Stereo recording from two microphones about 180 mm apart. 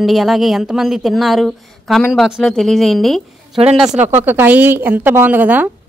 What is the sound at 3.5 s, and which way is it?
Speech, 35° right (ahead or behind).